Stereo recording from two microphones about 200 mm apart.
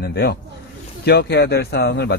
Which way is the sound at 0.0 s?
55° left (ahead or behind).